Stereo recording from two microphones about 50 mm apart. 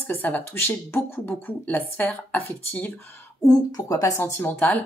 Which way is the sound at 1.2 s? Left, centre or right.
Left.